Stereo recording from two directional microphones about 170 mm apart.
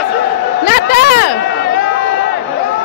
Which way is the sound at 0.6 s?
60° left (ahead or behind).